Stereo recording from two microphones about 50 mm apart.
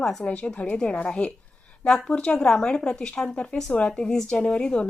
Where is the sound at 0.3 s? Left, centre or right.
Left.